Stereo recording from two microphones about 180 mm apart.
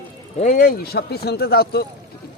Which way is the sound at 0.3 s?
45° left (ahead or behind).